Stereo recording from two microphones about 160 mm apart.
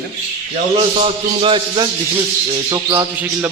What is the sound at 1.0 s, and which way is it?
Speech, 30° right (ahead or behind).